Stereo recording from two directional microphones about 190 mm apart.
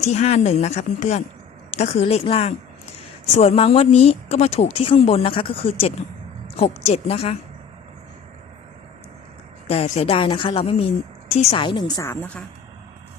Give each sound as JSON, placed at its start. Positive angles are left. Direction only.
{"t": 0.0, "sound": "speech", "side_deg": 35}
{"t": 9.6, "sound": "a woman's voice", "side_deg": 35}